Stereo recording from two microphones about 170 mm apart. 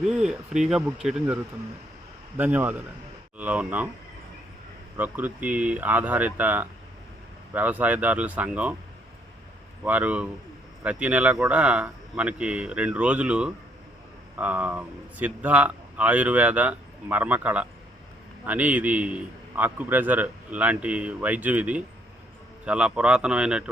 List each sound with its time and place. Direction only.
0.0 s speech: centre (ahead or behind)
2.4 s a man's voice: 10° right (ahead or behind)
4.9 s a man's voice: 10° right (ahead or behind)
9.8 s a man's voice: 10° right (ahead or behind)